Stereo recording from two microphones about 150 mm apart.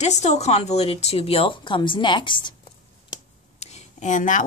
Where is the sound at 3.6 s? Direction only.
45° left (ahead or behind).